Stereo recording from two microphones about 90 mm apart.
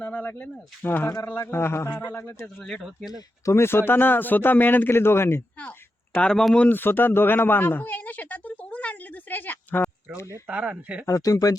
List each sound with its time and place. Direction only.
0.0 s speech: 20° left (ahead or behind)
3.1 s speech: 45° left (ahead or behind)
3.5 s speech: 25° left (ahead or behind)
6.1 s speech: 10° left (ahead or behind)
6.7 s speech: 20° left (ahead or behind)
10.2 s speech: 35° left (ahead or behind)
10.4 s speech: 15° right (ahead or behind)
11.0 s speech: 40° left (ahead or behind)